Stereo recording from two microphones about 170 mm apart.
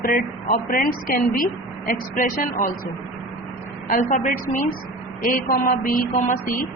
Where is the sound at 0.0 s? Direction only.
55° left (ahead or behind).